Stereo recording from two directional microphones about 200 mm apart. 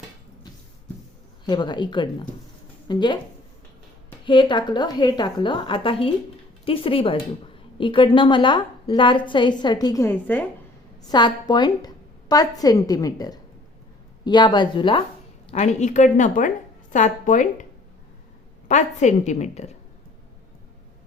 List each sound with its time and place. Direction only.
1.5 s a woman's voice: 20° left (ahead or behind)
4.3 s a woman's voice: 25° left (ahead or behind)
11.1 s a woman's voice: 20° left (ahead or behind)
15.5 s a woman's voice: 35° left (ahead or behind)
18.7 s a woman's voice: 35° left (ahead or behind)